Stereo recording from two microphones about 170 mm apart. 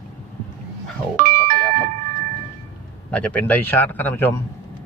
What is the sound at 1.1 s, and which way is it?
Music, 50° right (ahead or behind).